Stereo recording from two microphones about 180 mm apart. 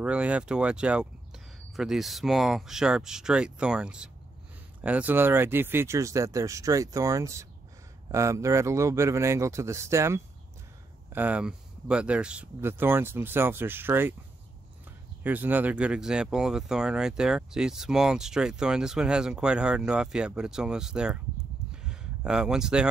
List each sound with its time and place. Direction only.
0.0 s speech: 5° right (ahead or behind)
15.2 s speech: 10° right (ahead or behind)